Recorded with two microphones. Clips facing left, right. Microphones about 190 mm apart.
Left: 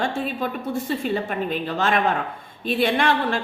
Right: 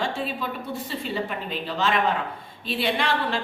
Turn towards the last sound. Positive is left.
turn(degrees=50)  # may be behind; listen again after turning